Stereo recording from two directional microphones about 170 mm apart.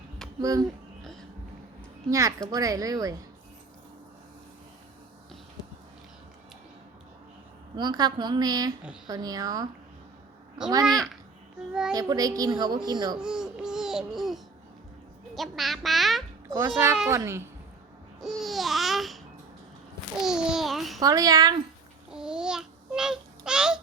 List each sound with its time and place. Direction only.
0.3 s speech: 20° right (ahead or behind)
2.0 s speech: 20° right (ahead or behind)
7.8 s speech: 25° right (ahead or behind)
10.8 s speech: centre (ahead or behind)
11.9 s speech: 20° right (ahead or behind)
13.1 s speech: 5° right (ahead or behind)
16.5 s a child's voice: 20° right (ahead or behind)
18.2 s babbling: centre (ahead or behind)
20.2 s a child's voice: 5° right (ahead or behind)
21.0 s speech: 20° right (ahead or behind)
22.1 s child singing: 5° right (ahead or behind)